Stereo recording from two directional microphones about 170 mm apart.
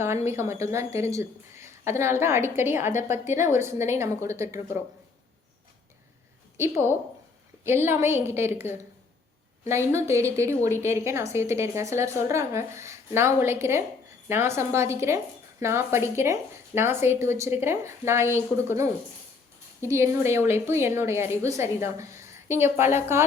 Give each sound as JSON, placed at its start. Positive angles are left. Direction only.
{"t": 0.3, "sound": "a woman's voice", "side_deg": -15}
{"t": 6.6, "sound": "a woman's voice", "side_deg": -15}